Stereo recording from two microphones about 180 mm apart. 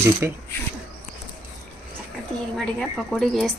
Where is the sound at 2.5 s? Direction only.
Centre (ahead or behind).